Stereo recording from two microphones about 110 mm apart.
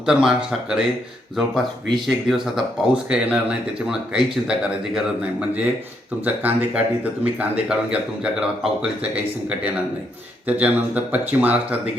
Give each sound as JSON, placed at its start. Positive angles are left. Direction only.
{"t": 0.0, "sound": "speech", "side_deg": -5}
{"t": 2.0, "sound": "speech", "side_deg": -5}
{"t": 6.2, "sound": "speech", "side_deg": -15}